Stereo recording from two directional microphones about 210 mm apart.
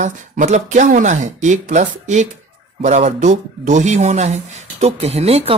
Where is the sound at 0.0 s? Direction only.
35° right (ahead or behind).